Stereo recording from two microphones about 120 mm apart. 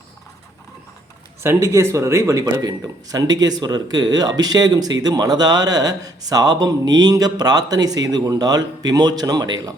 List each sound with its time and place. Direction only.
1.6 s speech: 25° right (ahead or behind)